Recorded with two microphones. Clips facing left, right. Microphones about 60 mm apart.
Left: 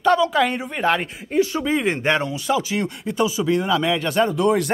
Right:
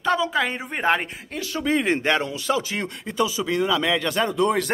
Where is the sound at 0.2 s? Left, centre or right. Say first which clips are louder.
Left 4 dB; centre.